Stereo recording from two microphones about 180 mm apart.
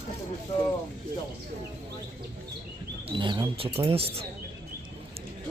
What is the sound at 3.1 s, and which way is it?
Speech, 25° right (ahead or behind).